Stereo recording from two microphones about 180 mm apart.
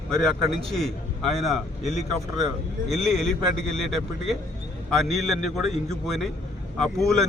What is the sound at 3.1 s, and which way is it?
A man's voice, centre (ahead or behind).